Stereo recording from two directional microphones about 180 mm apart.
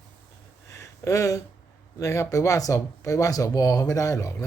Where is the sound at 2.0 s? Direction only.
15° left (ahead or behind).